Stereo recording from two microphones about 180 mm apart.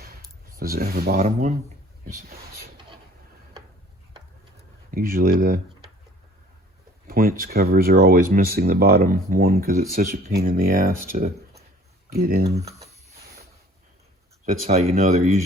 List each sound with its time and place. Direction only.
0.5 s speech: 55° right (ahead or behind)
1.2 s speech: 40° right (ahead or behind)
4.9 s speech: 50° right (ahead or behind)
7.1 s speech: 55° right (ahead or behind)
14.4 s speech: 40° right (ahead or behind)